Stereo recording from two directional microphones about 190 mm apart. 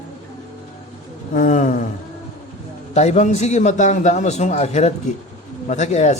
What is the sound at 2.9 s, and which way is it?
A man's voice, 35° left (ahead or behind).